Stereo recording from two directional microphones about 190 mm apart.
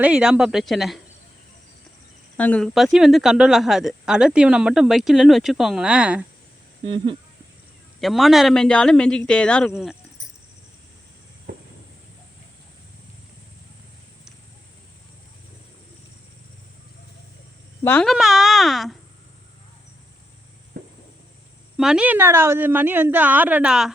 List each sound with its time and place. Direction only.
0.0 s a woman's voice: 5° right (ahead or behind)
2.4 s a woman's voice: 5° left (ahead or behind)
6.8 s speech: 25° right (ahead or behind)
8.0 s a woman's voice: centre (ahead or behind)
17.8 s speech: 10° left (ahead or behind)
18.1 s a woman's voice: centre (ahead or behind)
21.8 s a woman's voice: 5° right (ahead or behind)